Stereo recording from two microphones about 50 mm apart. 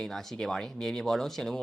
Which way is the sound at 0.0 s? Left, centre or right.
Centre.